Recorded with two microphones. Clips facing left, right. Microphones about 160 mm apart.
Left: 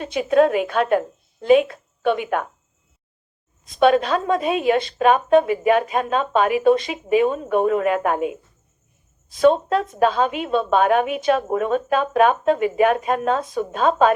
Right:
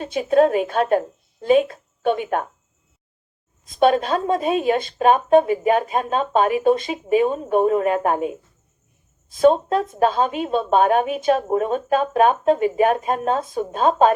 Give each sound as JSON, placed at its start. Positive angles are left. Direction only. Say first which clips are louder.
{"t": 0.0, "sound": "a woman's voice", "louder": "even", "side_deg": -40}
{"t": 3.8, "sound": "a woman's voice", "louder": "left 1 dB", "side_deg": -45}